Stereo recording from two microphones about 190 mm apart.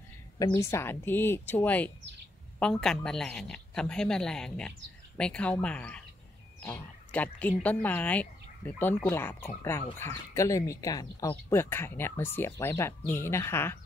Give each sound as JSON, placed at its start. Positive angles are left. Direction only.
{"t": 0.4, "sound": "a woman's voice", "side_deg": 15}